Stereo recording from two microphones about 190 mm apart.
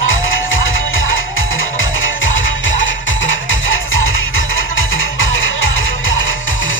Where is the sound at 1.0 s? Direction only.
90° left.